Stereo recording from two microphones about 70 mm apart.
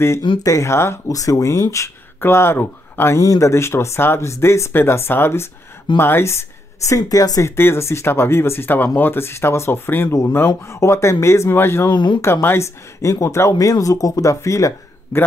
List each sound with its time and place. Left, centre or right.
0.4 s speech: left
0.7 s speech: left
1.0 s speech: left
3.2 s speech: left
7.0 s speech: left
7.4 s speech: left
10.0 s speech: left
11.9 s speech: left
12.2 s speech: left
15.1 s speech: left